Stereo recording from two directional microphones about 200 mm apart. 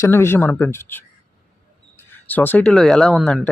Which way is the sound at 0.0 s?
15° left (ahead or behind).